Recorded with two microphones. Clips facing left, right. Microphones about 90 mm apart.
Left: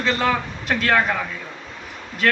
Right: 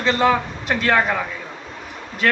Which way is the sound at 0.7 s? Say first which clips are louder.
Right 1 dB; 5° right (ahead or behind).